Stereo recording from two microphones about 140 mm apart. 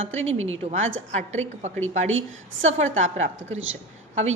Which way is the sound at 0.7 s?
55° right (ahead or behind).